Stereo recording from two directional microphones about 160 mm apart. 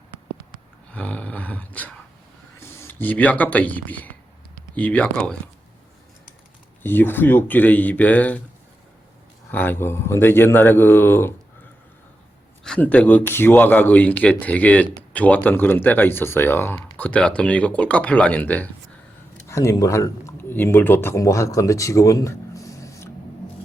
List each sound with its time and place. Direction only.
0.9 s speech: 10° left (ahead or behind)
6.8 s speech: 15° left (ahead or behind)
9.5 s speech: 10° left (ahead or behind)
12.6 s speech: 5° left (ahead or behind)